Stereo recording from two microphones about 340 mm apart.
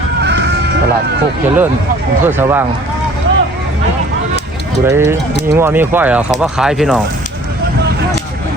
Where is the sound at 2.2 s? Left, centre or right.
Centre.